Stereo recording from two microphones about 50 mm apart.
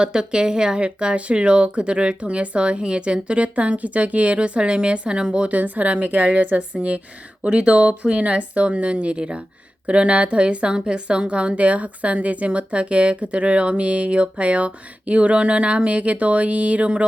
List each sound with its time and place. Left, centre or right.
0.0 s a woman's voice: centre